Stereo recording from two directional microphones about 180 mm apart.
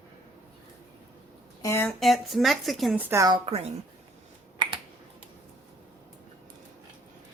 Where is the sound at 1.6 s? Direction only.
15° left (ahead or behind).